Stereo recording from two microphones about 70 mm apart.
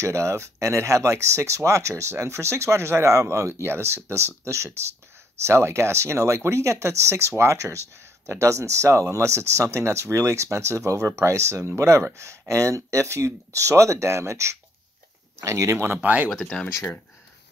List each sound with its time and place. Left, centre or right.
0.0 s speech: right
15.8 s speech: right
16.3 s speech: centre
16.6 s speech: left